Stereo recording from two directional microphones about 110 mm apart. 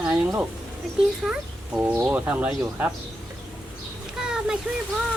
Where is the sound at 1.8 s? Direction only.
20° right (ahead or behind).